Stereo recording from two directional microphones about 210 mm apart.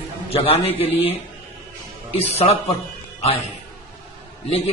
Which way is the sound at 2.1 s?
30° left (ahead or behind).